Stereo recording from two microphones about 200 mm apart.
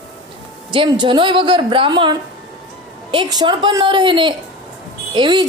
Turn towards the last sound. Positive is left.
turn(degrees=-20)  # may be behind; listen again after turning